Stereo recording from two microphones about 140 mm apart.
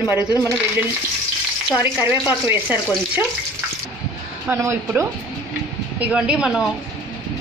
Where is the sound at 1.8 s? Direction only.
15° right (ahead or behind).